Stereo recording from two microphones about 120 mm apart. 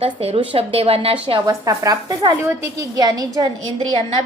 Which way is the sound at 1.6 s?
30° right (ahead or behind).